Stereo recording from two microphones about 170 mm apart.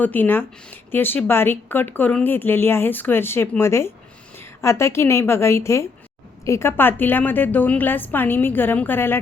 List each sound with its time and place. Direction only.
0.0 s a woman's voice: 10° left (ahead or behind)